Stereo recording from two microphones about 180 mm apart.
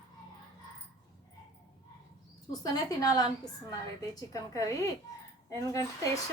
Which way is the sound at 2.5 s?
20° left (ahead or behind).